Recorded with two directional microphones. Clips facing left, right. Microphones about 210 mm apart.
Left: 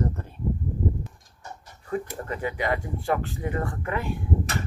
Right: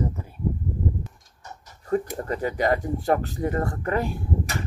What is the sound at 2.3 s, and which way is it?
Speech, 40° right (ahead or behind).